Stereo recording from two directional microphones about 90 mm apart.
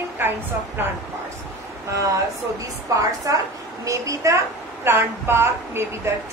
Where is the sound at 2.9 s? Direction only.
40° right (ahead or behind).